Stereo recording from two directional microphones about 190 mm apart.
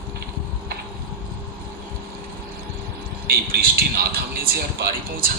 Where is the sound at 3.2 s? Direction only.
50° right (ahead or behind).